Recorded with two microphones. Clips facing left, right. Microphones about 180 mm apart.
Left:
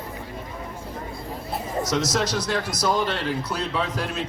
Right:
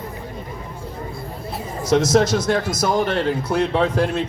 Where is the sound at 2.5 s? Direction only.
50° right (ahead or behind).